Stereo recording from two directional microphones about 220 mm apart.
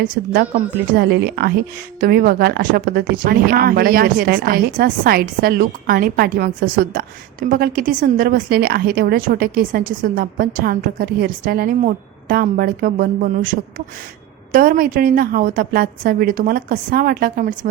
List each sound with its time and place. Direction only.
0.9 s a woman's voice: 45° right (ahead or behind)